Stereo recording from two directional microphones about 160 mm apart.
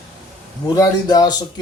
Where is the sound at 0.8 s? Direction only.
25° left (ahead or behind).